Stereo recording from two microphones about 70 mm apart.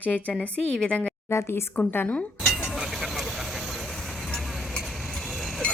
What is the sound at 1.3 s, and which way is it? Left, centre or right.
Speech, left.